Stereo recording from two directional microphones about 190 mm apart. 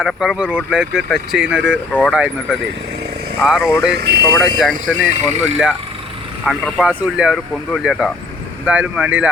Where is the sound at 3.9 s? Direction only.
55° right (ahead or behind).